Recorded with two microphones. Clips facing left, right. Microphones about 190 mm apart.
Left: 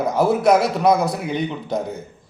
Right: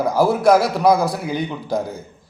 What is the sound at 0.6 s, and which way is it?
A man's voice, centre (ahead or behind).